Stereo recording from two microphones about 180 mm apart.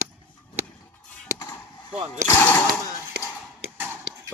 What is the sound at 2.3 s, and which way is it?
Speech, 10° left (ahead or behind).